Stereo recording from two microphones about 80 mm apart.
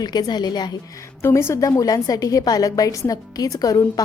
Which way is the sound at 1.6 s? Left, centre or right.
Left.